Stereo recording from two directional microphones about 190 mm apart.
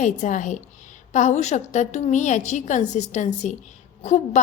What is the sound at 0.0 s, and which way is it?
A woman's voice, 40° left (ahead or behind).